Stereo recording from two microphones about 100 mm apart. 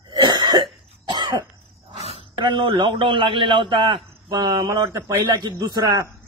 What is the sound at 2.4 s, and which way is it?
A man's voice, 55° right (ahead or behind).